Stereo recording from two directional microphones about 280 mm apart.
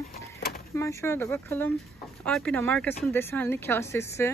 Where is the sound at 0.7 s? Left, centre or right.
Centre.